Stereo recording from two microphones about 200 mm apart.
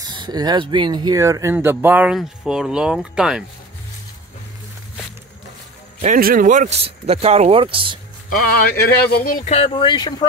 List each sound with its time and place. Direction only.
0.0 s speech: 20° right (ahead or behind); by 3.4 s 5° right (ahead or behind)
6.1 s speech: 45° right (ahead or behind); by 8.0 s 25° right (ahead or behind)
8.3 s speech: 50° left (ahead or behind)
9.4 s speech: 30° left (ahead or behind)